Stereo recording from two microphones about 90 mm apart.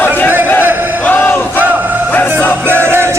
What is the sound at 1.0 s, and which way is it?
Battle cry, 20° left (ahead or behind).